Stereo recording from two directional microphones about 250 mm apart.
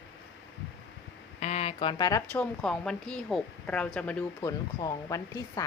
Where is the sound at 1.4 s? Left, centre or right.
Left.